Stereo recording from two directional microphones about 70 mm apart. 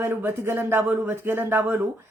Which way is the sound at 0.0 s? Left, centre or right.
Right.